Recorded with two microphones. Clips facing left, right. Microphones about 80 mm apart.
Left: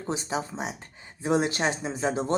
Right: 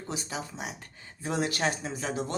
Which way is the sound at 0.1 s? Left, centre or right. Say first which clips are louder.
Left 7 dB; left.